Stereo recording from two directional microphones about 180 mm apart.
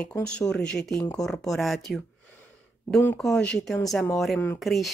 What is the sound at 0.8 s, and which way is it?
A woman's voice, 5° left (ahead or behind).